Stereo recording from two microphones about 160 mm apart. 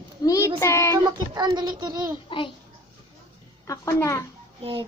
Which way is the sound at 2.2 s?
30° left (ahead or behind).